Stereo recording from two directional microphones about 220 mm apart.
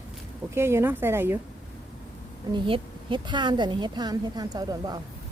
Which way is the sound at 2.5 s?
20° right (ahead or behind).